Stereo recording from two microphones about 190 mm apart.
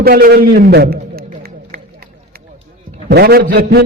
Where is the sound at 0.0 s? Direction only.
55° right (ahead or behind).